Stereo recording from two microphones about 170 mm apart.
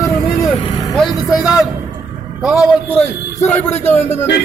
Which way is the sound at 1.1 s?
20° left (ahead or behind).